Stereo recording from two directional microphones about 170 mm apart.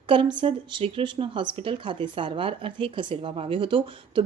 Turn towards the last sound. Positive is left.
turn(degrees=-30)  # may be behind; listen again after turning